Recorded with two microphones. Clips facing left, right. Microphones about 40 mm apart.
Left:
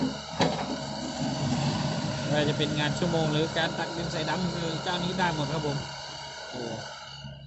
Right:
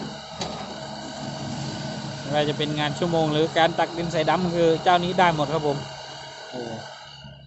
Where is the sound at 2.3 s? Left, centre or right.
Centre; by 4.4 s right.